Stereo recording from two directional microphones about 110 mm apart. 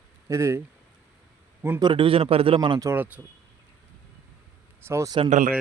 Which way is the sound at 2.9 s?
15° right (ahead or behind).